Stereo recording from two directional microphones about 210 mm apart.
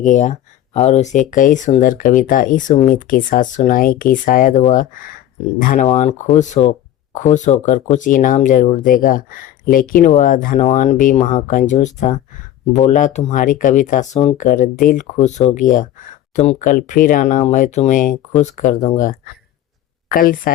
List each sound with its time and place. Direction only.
0.0 s speech: 35° left (ahead or behind)